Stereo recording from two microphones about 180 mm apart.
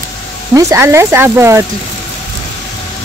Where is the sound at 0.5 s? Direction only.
15° right (ahead or behind).